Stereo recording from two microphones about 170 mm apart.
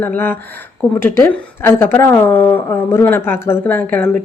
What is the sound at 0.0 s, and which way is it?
Speech, 10° left (ahead or behind).